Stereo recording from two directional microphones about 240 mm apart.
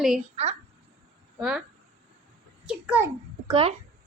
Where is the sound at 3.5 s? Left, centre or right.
Right.